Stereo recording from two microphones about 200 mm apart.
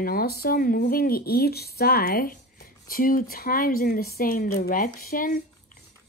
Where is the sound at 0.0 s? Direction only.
50° left (ahead or behind).